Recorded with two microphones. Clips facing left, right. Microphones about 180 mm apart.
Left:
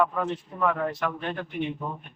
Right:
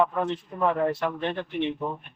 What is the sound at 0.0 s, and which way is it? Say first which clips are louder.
Speech: right 1 dB; 30° right (ahead or behind).